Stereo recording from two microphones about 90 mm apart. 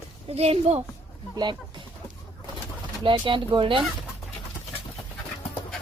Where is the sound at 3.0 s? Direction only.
70° right (ahead or behind).